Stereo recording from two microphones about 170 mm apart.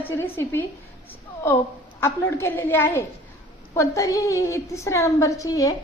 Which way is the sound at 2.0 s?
15° left (ahead or behind).